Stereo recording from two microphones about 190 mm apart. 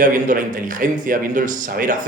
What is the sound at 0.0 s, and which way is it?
Speech, 45° right (ahead or behind).